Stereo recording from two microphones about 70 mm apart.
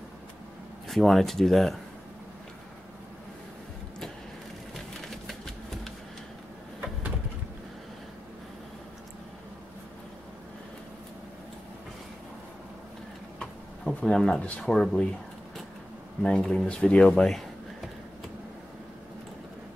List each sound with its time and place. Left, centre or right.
0.8 s speech: centre
4.7 s crushing: centre
13.4 s a sound: centre
16.2 s speech: centre